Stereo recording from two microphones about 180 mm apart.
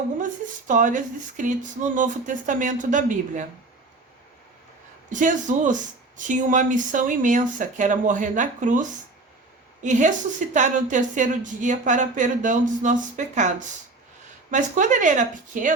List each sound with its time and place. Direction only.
0.7 s speech: 45° right (ahead or behind)
5.0 s speech: 45° right (ahead or behind)